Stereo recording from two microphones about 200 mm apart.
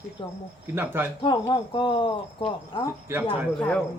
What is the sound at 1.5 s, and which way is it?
Speech, 25° left (ahead or behind).